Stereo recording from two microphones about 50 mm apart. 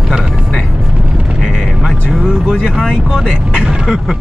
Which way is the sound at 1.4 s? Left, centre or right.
Centre.